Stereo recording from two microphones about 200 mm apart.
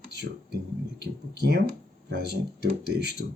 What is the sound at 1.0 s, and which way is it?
Speech, 55° right (ahead or behind).